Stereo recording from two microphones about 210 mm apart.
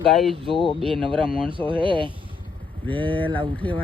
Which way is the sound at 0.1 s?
Centre (ahead or behind).